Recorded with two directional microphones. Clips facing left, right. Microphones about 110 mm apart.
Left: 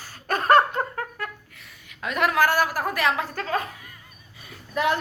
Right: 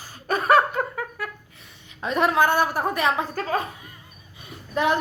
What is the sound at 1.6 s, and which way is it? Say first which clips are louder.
A woman's voice: right 3 dB; 25° right (ahead or behind).